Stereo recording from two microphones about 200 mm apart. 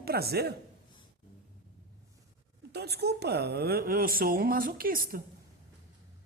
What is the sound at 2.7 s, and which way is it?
Speech, 55° right (ahead or behind).